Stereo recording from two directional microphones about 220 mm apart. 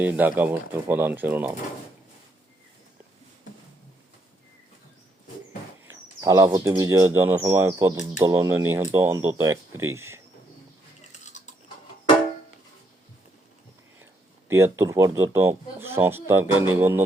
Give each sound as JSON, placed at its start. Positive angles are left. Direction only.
{"t": 0.0, "sound": "speech", "side_deg": -10}
{"t": 5.9, "sound": "speech", "side_deg": -15}
{"t": 11.3, "sound": "mechanisms", "side_deg": 30}
{"t": 14.0, "sound": "speech", "side_deg": -10}